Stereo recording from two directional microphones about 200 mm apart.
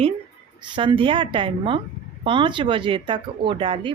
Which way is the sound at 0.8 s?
25° right (ahead or behind).